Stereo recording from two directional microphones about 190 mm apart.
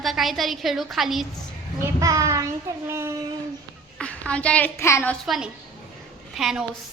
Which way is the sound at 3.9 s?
5° left (ahead or behind).